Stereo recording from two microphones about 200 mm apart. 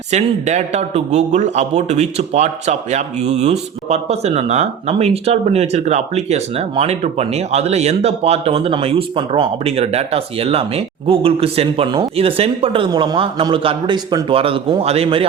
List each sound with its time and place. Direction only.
0.1 s a man's voice: 35° right (ahead or behind)